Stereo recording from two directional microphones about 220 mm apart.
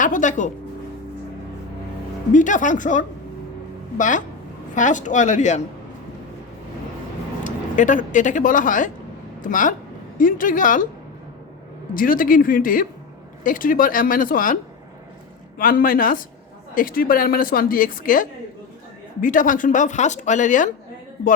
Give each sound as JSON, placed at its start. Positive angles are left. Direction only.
{"t": 0.0, "sound": "a woman's voice", "side_deg": 35}
{"t": 2.3, "sound": "a woman's voice", "side_deg": 35}
{"t": 7.4, "sound": "a woman's voice", "side_deg": 35}
{"t": 11.9, "sound": "a woman's voice", "side_deg": 40}